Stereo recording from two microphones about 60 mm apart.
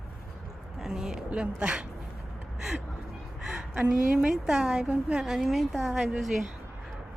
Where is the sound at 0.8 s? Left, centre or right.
Centre.